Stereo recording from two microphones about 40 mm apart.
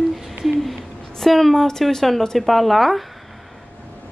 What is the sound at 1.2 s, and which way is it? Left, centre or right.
A woman's voice, centre.